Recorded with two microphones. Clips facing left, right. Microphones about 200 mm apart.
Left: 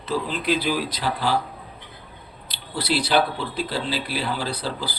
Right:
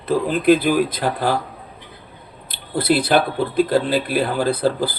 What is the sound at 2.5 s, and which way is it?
Speech, 55° right (ahead or behind).